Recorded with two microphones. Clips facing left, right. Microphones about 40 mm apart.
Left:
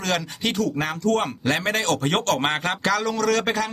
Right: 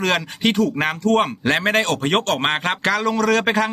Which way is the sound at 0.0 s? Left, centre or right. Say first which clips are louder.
Right 5 dB; right.